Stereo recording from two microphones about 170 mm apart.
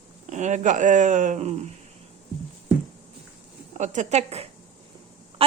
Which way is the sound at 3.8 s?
45° right (ahead or behind).